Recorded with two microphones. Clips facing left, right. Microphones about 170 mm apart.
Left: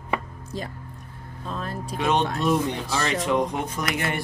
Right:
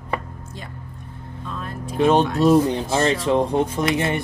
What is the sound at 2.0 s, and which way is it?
Speech, 35° right (ahead or behind).